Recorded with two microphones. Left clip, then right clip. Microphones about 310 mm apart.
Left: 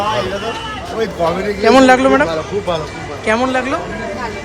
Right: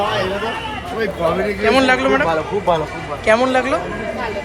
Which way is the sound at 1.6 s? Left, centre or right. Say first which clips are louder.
Left 6 dB; left.